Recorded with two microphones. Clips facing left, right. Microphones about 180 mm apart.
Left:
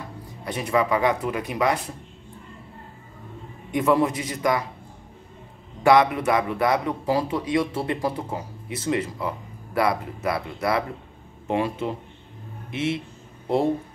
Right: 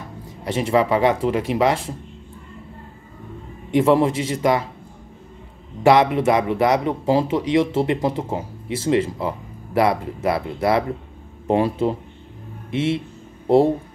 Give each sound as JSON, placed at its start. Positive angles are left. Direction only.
{"t": 0.5, "sound": "speech", "side_deg": -25}
{"t": 3.7, "sound": "speech", "side_deg": -25}
{"t": 5.9, "sound": "speech", "side_deg": -25}